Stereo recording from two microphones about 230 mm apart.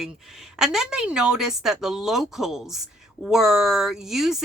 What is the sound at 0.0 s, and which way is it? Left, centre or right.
A woman's voice, centre.